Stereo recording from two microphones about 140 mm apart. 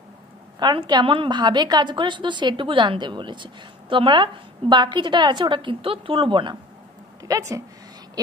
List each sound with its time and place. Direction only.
0.6 s a woman's voice: 30° right (ahead or behind)
7.2 s a woman's voice: 25° right (ahead or behind)